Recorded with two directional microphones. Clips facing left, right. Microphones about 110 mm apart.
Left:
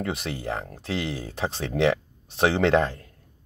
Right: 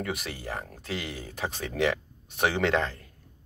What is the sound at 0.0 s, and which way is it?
Speech, 30° left (ahead or behind).